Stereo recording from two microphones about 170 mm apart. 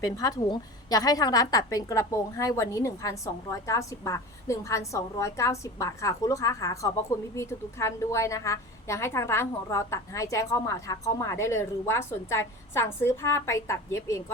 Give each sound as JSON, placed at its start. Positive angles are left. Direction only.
{"t": 0.0, "sound": "a woman's voice", "side_deg": 20}